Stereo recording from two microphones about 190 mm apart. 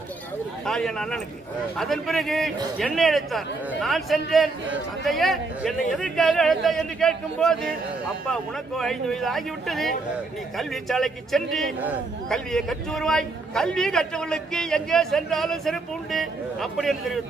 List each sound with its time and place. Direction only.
0.7 s a man's voice: 5° left (ahead or behind)